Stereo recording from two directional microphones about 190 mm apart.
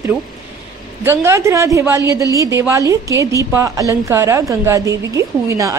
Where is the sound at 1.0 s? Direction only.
15° right (ahead or behind).